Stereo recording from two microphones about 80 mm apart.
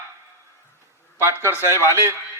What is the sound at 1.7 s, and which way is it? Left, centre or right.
Speech, left.